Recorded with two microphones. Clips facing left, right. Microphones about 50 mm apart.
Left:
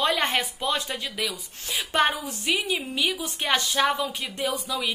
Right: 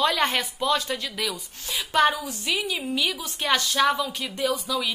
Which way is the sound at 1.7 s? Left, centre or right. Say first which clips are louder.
Right 2 dB; left.